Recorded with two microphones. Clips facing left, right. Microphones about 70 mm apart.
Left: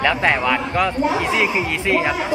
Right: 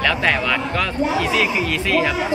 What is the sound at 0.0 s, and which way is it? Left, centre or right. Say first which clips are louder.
A man's voice: left 1 dB; left.